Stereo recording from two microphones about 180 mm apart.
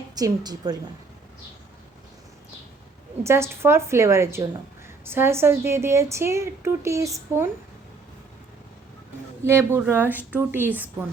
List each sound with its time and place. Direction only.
0.2 s a woman's voice: 20° right (ahead or behind)
3.2 s a woman's voice: 15° right (ahead or behind)
9.4 s a woman's voice: 15° right (ahead or behind)